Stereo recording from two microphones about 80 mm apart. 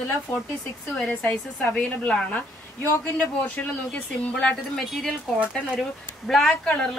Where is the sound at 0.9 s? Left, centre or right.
Centre.